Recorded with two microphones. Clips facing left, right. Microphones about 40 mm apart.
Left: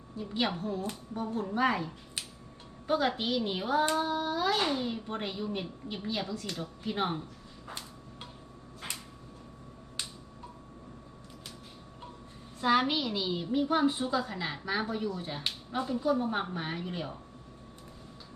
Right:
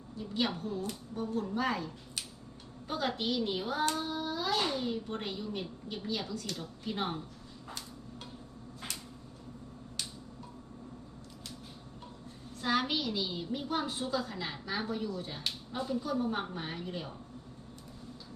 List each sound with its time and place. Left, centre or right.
0.3 s a woman's voice: centre
7.7 s a sound: left
12.5 s a woman's voice: centre